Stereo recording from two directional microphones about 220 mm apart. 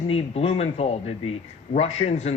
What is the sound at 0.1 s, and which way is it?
Speech, 25° left (ahead or behind).